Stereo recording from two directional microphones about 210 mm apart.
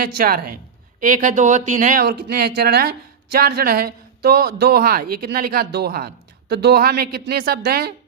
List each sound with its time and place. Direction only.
0.0 s a woman's voice: 45° right (ahead or behind)